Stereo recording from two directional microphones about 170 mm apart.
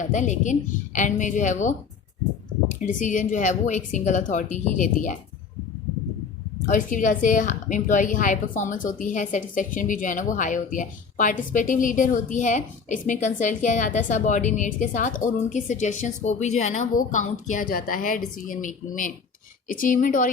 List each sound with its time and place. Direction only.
0.0 s speech: 45° left (ahead or behind)
6.7 s speech: 50° left (ahead or behind)